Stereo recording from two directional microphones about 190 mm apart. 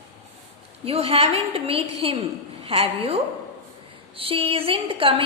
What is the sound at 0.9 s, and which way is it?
A woman's voice, 30° right (ahead or behind).